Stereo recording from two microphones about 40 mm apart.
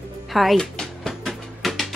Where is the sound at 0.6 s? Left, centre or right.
Centre.